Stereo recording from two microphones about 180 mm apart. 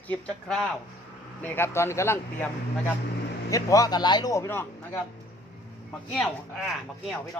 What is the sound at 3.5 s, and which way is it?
A man's voice, 20° left (ahead or behind).